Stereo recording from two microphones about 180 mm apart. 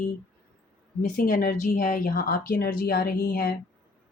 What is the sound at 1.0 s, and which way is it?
Speech, 50° left (ahead or behind).